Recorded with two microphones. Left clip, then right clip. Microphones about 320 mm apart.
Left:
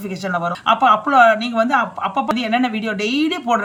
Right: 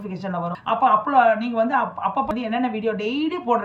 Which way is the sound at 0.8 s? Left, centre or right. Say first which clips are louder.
Left 3 dB; centre.